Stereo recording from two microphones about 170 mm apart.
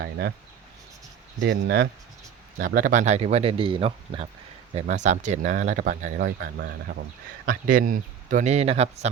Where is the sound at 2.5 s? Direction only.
55° right (ahead or behind); by 4.2 s 30° right (ahead or behind).